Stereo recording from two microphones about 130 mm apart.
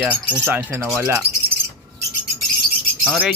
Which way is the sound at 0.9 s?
20° right (ahead or behind).